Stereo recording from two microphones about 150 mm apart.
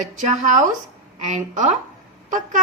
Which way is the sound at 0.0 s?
55° right (ahead or behind).